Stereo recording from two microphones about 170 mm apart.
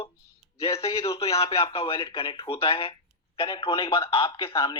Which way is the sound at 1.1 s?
35° left (ahead or behind).